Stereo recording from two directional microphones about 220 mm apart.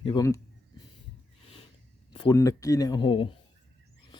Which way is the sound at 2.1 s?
20° left (ahead or behind).